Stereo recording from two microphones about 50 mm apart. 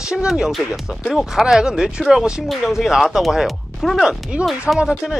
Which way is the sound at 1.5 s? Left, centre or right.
Centre.